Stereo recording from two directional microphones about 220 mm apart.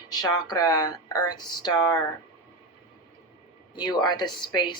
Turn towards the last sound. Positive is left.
turn(degrees=20)  # may be behind; listen again after turning